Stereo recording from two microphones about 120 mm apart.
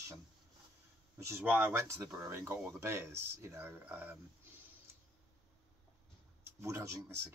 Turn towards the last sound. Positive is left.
turn(degrees=-20)  # may be behind; listen again after turning